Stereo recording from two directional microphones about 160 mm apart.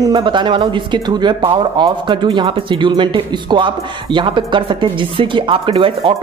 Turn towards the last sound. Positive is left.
turn(degrees=-35)  # may be behind; listen again after turning